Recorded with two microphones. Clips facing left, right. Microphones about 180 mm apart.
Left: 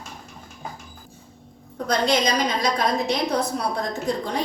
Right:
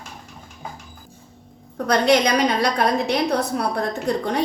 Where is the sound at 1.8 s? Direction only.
65° right (ahead or behind).